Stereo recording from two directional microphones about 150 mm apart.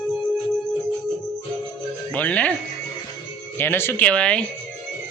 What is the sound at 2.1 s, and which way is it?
Speech, 10° left (ahead or behind).